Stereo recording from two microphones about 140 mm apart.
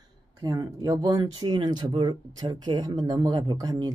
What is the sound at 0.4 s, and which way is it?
Speech, 25° right (ahead or behind).